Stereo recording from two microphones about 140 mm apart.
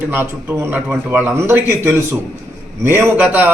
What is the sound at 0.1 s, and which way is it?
A man's voice, 15° right (ahead or behind).